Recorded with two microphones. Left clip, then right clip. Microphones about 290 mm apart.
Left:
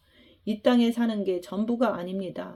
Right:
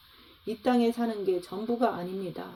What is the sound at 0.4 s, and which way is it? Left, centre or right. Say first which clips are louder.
Speech: left 3 dB; left.